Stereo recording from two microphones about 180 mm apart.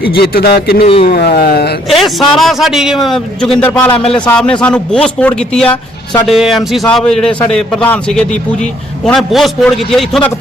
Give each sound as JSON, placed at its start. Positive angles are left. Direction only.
{"t": 0.0, "sound": "speech", "side_deg": 60}
{"t": 1.9, "sound": "a man's voice", "side_deg": 0}